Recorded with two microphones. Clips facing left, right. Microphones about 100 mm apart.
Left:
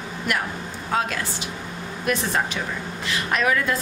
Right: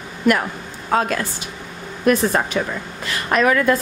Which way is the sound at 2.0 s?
45° right (ahead or behind).